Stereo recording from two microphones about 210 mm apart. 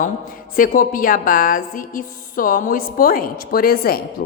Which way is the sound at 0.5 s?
40° left (ahead or behind).